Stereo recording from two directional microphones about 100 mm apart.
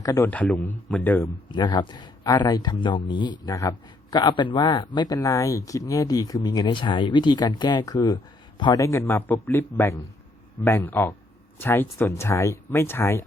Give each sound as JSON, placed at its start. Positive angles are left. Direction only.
{"t": 0.0, "sound": "a man's voice", "side_deg": 35}
{"t": 0.3, "sound": "a man's voice", "side_deg": 15}
{"t": 1.5, "sound": "speech", "side_deg": 45}
{"t": 4.2, "sound": "speech", "side_deg": 55}
{"t": 8.8, "sound": "speech", "side_deg": 25}